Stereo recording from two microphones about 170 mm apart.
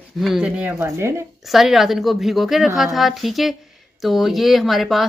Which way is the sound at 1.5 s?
Centre (ahead or behind).